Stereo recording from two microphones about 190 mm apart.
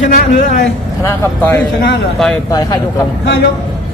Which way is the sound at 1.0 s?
10° left (ahead or behind).